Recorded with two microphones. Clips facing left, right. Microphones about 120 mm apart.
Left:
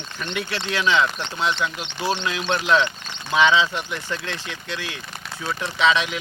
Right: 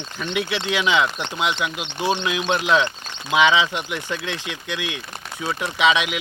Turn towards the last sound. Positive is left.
turn(degrees=-15)  # may be behind; listen again after turning